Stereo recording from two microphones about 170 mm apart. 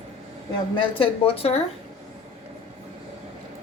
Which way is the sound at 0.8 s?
30° left (ahead or behind).